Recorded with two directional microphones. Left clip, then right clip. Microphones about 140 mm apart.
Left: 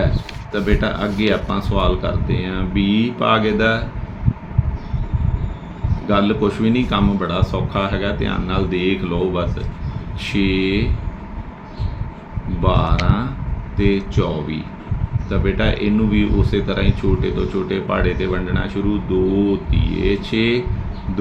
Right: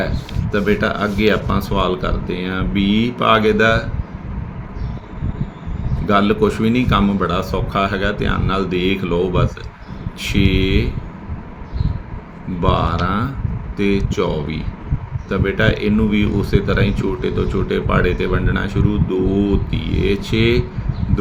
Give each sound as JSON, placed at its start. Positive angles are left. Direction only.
{"t": 0.5, "sound": "speech", "side_deg": -45}
{"t": 6.1, "sound": "speech", "side_deg": -45}
{"t": 12.6, "sound": "speech", "side_deg": -45}